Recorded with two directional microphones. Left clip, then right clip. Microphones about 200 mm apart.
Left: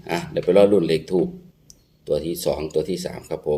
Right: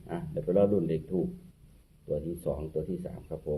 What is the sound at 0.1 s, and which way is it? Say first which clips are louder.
Speech: left 11 dB; 20° left (ahead or behind).